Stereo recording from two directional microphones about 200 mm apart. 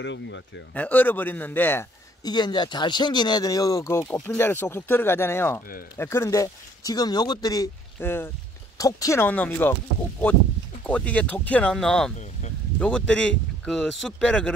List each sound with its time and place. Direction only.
0.0 s speech: 65° left (ahead or behind)
0.7 s a man's voice: 10° left (ahead or behind)
10.9 s a man's voice: 5° left (ahead or behind)
12.2 s a sound: 35° left (ahead or behind)
12.7 s speech: 5° left (ahead or behind)